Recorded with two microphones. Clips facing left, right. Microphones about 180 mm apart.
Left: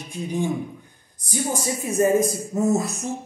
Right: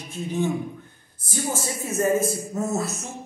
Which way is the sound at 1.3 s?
15° left (ahead or behind).